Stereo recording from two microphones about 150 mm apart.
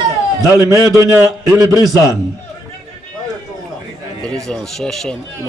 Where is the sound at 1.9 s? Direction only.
25° left (ahead or behind).